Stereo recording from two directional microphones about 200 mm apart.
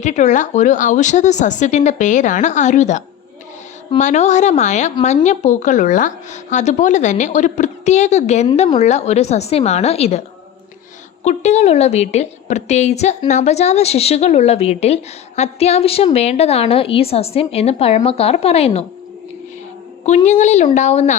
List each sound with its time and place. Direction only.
0.0 s a woman's voice: 35° left (ahead or behind)
20.1 s a woman's voice: 35° left (ahead or behind)